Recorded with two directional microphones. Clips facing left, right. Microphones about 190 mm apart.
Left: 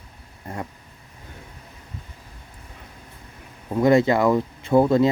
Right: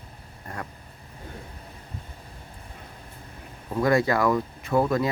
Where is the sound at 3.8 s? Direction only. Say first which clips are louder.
Left 5 dB; 25° left (ahead or behind).